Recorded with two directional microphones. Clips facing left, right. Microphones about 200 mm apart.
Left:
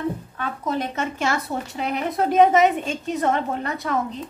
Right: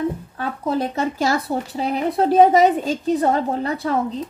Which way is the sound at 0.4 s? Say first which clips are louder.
Right 5 dB; 35° right (ahead or behind).